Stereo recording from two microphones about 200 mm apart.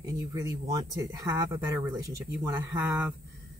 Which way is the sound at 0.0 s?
15° right (ahead or behind).